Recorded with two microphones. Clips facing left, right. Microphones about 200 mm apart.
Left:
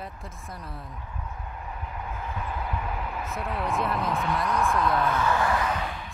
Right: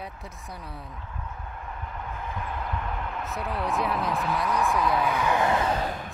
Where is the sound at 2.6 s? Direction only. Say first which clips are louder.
Even; 5° left (ahead or behind).